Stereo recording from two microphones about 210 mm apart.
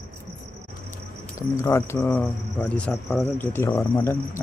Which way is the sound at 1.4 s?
15° left (ahead or behind).